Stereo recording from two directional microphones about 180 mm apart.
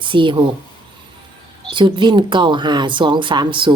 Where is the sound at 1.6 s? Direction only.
25° right (ahead or behind).